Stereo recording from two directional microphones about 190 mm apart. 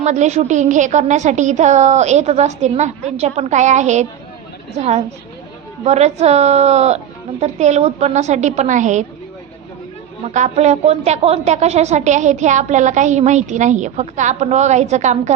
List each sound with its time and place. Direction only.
0.0 s a woman's voice: 40° right (ahead or behind)
10.2 s a woman's voice: 40° right (ahead or behind)